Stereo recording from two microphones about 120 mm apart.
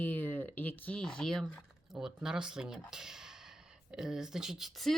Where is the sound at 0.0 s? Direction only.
15° left (ahead or behind).